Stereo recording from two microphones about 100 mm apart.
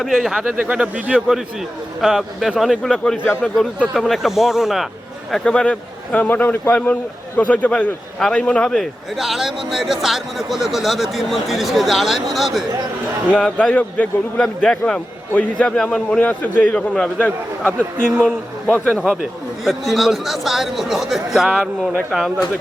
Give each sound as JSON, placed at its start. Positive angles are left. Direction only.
{"t": 0.0, "sound": "a man's voice", "side_deg": -5}
{"t": 5.3, "sound": "a man's voice", "side_deg": 10}
{"t": 19.6, "sound": "a man's voice", "side_deg": 0}